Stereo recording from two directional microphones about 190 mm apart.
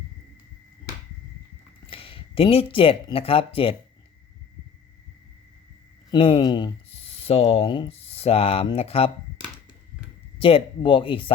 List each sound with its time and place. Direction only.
1.9 s speech: 30° left (ahead or behind)
6.1 s speech: 25° left (ahead or behind)
10.3 s speech: 30° left (ahead or behind)